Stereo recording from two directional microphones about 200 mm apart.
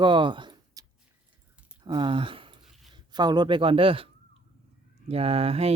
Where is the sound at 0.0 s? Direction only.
25° right (ahead or behind).